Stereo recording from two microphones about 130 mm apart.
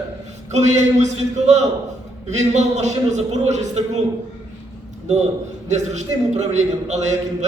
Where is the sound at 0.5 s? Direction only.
60° right (ahead or behind).